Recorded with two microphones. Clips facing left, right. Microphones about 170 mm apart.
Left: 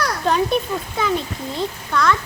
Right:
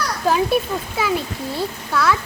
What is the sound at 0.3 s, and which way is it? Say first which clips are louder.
A child's voice: right 2 dB; 5° right (ahead or behind).